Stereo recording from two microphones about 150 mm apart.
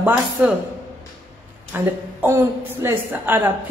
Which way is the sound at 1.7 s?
15° right (ahead or behind).